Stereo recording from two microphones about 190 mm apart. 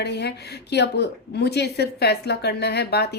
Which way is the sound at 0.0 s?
60° left (ahead or behind).